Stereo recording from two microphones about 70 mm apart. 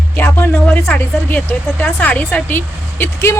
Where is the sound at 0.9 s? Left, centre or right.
Left.